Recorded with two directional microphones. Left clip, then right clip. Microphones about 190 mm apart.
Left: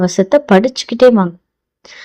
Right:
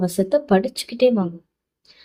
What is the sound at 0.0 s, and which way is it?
A woman's voice, 35° left (ahead or behind).